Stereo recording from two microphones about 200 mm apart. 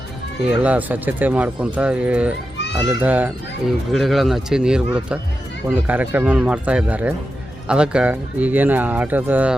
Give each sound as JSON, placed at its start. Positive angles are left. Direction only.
{"t": 0.4, "sound": "speech", "side_deg": -5}
{"t": 2.6, "sound": "children playing", "side_deg": 60}
{"t": 3.0, "sound": "speech", "side_deg": -10}